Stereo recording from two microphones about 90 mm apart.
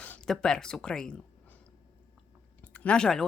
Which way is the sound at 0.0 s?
15° left (ahead or behind).